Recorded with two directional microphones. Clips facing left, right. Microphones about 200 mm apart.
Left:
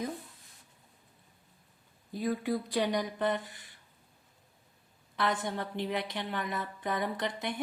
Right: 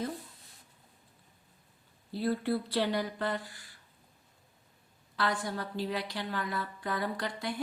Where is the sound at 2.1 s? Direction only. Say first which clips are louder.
Right 1 dB; 15° left (ahead or behind).